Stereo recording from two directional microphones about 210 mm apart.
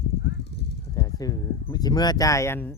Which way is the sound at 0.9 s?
15° left (ahead or behind).